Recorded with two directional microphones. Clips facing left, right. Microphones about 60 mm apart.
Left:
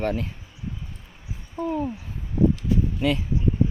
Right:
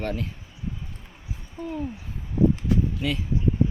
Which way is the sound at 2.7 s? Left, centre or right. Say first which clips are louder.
Even; right.